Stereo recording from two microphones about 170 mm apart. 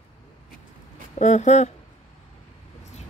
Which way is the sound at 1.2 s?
45° left (ahead or behind).